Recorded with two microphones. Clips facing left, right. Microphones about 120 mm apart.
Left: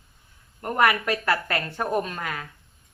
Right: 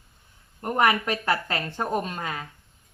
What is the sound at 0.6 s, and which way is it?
Speech, 20° right (ahead or behind).